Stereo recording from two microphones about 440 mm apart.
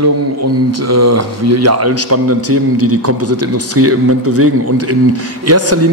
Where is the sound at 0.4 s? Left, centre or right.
Right.